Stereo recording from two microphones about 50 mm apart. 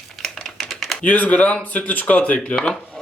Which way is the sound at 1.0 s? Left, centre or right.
Left.